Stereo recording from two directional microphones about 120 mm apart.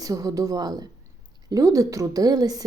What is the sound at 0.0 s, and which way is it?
A woman's voice, 30° right (ahead or behind).